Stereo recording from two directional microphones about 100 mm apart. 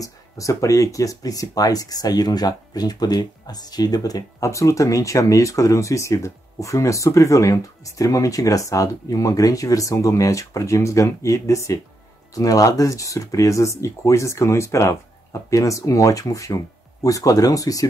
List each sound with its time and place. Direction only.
0.0 s speech: 35° left (ahead or behind)